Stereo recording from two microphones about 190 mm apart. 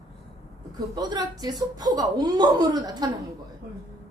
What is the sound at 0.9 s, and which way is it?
A woman's voice, 20° right (ahead or behind).